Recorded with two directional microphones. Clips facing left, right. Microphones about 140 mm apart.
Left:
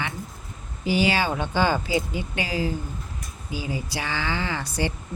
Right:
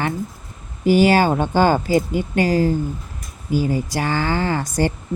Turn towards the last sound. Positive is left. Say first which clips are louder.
# right 7 dB
turn(degrees=-45)  # may be behind; listen again after turning